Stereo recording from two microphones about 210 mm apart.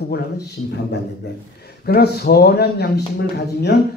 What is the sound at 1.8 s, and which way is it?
Speech, 50° left (ahead or behind).